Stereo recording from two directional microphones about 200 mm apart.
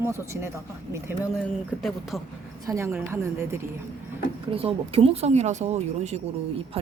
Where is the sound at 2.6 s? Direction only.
15° right (ahead or behind).